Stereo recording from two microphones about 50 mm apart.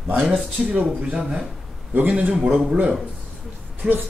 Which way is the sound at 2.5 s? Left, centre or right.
Centre.